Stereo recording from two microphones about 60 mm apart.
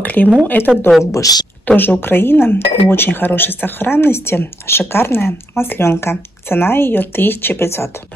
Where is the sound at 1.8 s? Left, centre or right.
Left.